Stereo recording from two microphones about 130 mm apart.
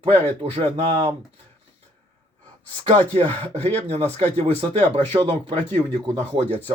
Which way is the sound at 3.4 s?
50° right (ahead or behind).